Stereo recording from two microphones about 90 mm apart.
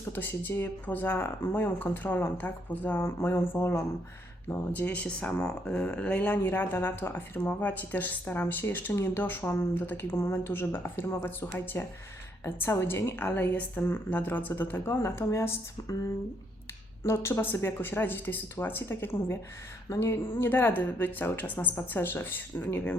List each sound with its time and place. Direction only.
0.2 s speech: 20° left (ahead or behind)
4.9 s speech: 15° left (ahead or behind); by 16.0 s 35° left (ahead or behind)
17.0 s speech: 30° left (ahead or behind)